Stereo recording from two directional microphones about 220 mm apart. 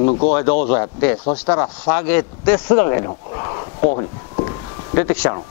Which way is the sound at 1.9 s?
10° left (ahead or behind).